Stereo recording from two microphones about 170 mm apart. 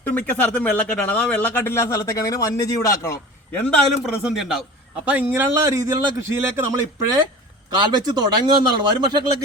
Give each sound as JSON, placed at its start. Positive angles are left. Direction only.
{"t": 0.0, "sound": "a man's voice", "side_deg": 10}
{"t": 3.5, "sound": "a man's voice", "side_deg": 5}